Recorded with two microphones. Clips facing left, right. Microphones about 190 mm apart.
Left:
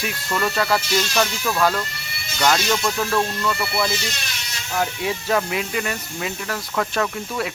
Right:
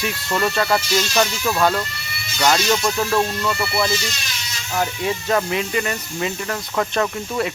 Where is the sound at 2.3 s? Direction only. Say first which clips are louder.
Right 2 dB; 10° right (ahead or behind).